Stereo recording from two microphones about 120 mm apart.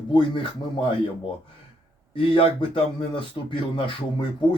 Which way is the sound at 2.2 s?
45° left (ahead or behind).